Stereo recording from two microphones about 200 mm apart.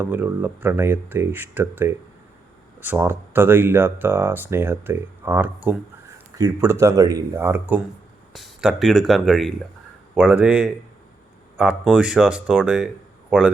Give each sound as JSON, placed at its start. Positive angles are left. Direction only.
{"t": 0.0, "sound": "speech", "side_deg": -10}
{"t": 8.3, "sound": "speech", "side_deg": 0}